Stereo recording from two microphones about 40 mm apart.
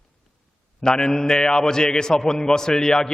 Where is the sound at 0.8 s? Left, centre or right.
Centre.